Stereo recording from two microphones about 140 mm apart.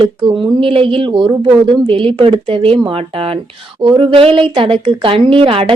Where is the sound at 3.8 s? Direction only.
35° right (ahead or behind).